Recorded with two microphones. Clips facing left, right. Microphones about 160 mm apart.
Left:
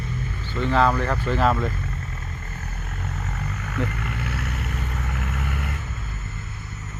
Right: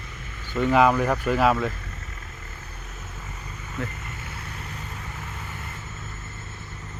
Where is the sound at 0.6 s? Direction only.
10° right (ahead or behind).